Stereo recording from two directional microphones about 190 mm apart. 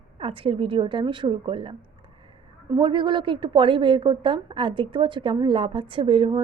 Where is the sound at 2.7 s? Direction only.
25° right (ahead or behind).